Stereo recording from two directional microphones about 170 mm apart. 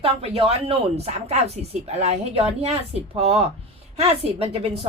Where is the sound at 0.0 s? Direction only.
35° right (ahead or behind).